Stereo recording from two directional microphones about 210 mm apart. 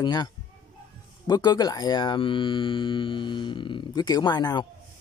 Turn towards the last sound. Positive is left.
turn(degrees=20)  # may be behind; listen again after turning